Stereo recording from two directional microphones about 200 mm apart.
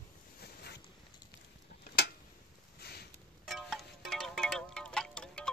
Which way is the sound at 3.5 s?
Centre (ahead or behind).